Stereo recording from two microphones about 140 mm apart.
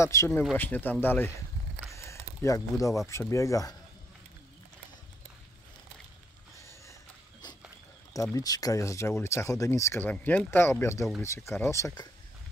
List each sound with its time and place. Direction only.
0.0 s speech: 20° left (ahead or behind)
2.0 s a sound: 20° left (ahead or behind)
3.1 s speech: 20° left (ahead or behind)
6.6 s a sound: 20° left (ahead or behind)
7.4 s dog: 30° left (ahead or behind)
8.1 s speech: 25° left (ahead or behind)